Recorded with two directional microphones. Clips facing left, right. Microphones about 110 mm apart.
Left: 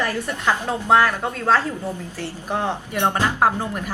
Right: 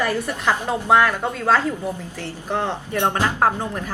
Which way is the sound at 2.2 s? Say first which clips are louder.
Even; 15° left (ahead or behind).